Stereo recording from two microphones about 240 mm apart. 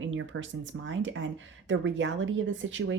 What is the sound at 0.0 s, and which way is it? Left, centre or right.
Speech, right.